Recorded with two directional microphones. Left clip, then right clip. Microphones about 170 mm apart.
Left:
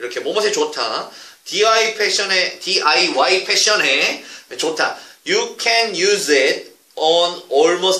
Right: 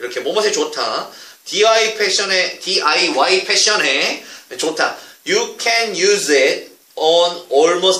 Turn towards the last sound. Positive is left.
turn(degrees=15)  # may be behind; listen again after turning